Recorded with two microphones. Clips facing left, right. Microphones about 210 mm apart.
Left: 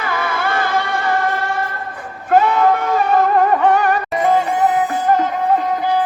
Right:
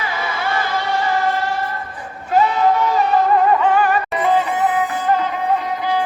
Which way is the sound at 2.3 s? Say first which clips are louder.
Left 2 dB; 55° left (ahead or behind).